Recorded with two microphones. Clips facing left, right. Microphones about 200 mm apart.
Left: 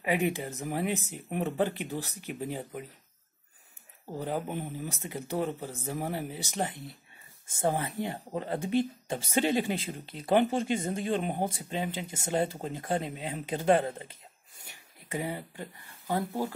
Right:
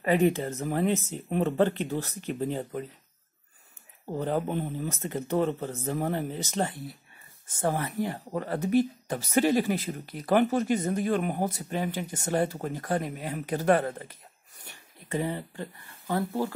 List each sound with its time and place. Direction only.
0.0 s speech: 10° left (ahead or behind)
4.2 s speech: 10° left (ahead or behind)
15.0 s speech: 15° left (ahead or behind)